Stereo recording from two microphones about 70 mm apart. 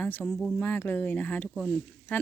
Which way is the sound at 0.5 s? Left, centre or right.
Left.